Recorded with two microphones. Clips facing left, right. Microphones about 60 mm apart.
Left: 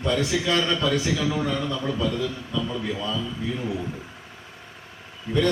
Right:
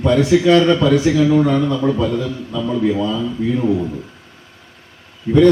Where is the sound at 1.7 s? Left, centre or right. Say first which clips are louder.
Right 9 dB; right.